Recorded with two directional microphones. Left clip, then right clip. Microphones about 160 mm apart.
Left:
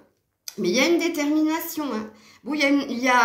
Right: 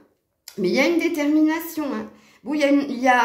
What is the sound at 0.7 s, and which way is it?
A woman's voice, 40° right (ahead or behind).